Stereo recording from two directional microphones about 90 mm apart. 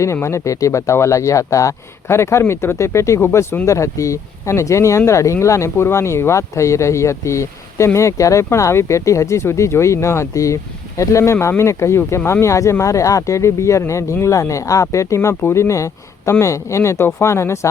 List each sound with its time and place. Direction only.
0.0 s speech: 30° left (ahead or behind)